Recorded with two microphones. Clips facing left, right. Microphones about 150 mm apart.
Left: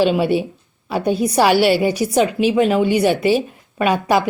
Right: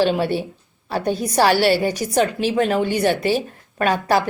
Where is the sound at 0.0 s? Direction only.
15° left (ahead or behind).